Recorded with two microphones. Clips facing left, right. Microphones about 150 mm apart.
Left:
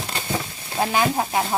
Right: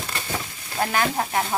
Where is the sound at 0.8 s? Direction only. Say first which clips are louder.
Left 2 dB; 20° left (ahead or behind).